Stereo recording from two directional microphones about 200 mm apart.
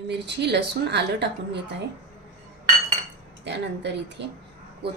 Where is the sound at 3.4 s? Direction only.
60° right (ahead or behind).